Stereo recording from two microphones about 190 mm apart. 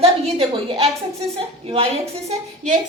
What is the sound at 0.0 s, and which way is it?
Speech, 30° right (ahead or behind).